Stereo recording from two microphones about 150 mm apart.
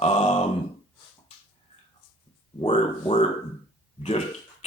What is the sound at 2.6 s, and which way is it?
Speech, 40° left (ahead or behind).